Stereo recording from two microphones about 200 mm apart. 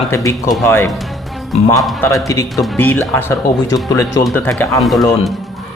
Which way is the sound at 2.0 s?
15° left (ahead or behind).